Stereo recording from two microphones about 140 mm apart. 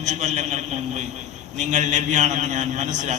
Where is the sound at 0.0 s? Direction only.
55° right (ahead or behind).